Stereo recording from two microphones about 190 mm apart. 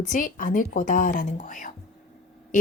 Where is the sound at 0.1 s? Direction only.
45° left (ahead or behind).